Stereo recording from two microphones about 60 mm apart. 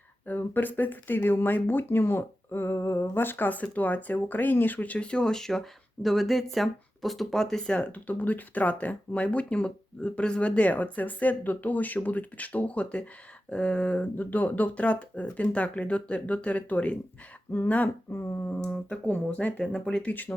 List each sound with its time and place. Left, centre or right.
0.3 s speech: left; by 7.8 s centre
7.8 s speech: left
17.8 s speech: left
18.9 s speech: left
20.1 s speech: left